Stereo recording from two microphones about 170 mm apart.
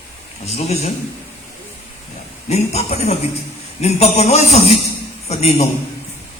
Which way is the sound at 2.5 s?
40° left (ahead or behind).